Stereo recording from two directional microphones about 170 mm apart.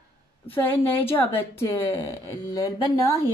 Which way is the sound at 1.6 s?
15° left (ahead or behind).